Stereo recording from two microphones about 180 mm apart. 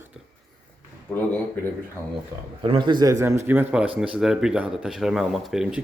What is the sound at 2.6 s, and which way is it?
Speech, 25° right (ahead or behind).